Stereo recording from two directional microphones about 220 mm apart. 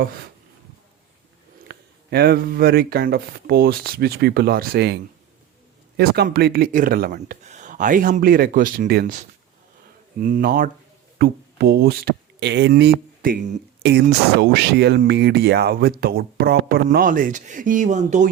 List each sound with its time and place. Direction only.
1.6 s speech: 45° right (ahead or behind)
6.0 s speech: 45° right (ahead or behind)